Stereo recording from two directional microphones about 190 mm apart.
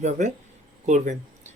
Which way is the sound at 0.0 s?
40° right (ahead or behind).